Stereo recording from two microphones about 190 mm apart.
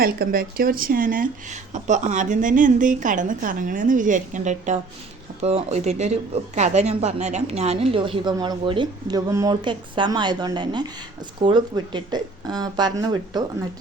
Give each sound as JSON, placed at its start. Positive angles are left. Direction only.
{"t": 0.0, "sound": "a woman's voice", "side_deg": -50}